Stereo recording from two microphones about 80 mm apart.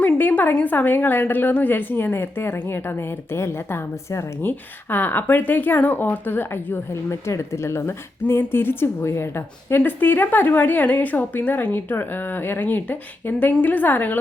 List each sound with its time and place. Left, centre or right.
0.0 s speech: left